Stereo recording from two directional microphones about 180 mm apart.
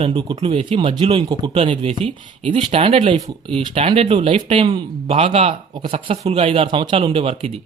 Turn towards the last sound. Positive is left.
turn(degrees=-30)  # may be behind; listen again after turning